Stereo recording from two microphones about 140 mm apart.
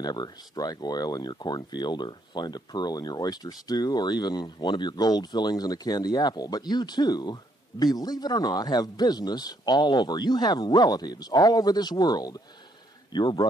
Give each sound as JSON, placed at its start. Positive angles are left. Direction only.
{"t": 0.0, "sound": "speech", "side_deg": 30}